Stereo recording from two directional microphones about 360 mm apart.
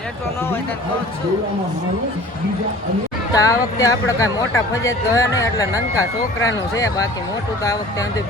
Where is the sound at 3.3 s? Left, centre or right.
Centre.